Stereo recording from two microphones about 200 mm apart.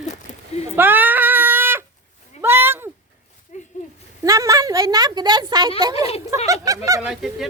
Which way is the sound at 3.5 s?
35° left (ahead or behind).